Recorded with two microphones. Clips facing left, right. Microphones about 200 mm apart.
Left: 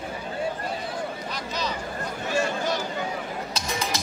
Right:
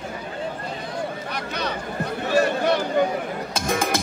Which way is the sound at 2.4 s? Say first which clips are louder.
Right 6 dB; 60° right (ahead or behind).